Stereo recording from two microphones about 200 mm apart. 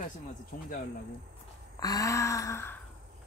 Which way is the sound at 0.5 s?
50° left (ahead or behind).